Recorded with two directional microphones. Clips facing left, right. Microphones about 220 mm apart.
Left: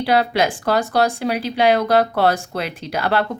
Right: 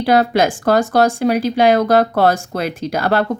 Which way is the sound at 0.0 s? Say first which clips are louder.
Right 4 dB; 45° right (ahead or behind).